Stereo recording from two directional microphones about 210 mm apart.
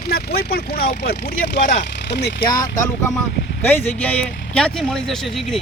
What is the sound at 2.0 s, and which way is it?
Speech, 55° left (ahead or behind).